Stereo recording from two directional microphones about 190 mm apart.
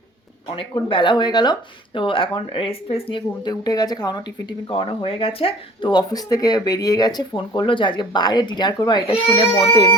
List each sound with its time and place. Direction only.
0.5 s speech: 25° left (ahead or behind)